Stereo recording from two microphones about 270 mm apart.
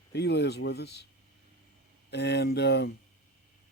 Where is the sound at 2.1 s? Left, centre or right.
Left.